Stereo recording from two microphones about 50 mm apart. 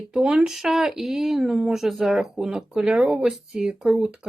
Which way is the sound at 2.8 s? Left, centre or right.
Right.